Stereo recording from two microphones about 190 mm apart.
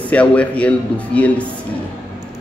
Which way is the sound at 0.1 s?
5° left (ahead or behind).